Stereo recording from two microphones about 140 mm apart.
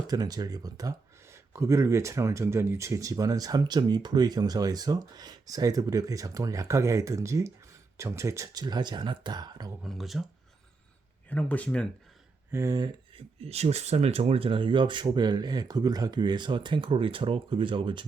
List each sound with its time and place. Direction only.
0.1 s speech: 30° right (ahead or behind)
9.8 s speech: centre (ahead or behind)
11.3 s speech: 10° left (ahead or behind)
12.5 s speech: 20° right (ahead or behind)
13.1 s speech: 45° right (ahead or behind)